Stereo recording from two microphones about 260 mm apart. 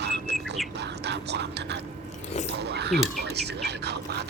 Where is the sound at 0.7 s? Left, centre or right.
Right.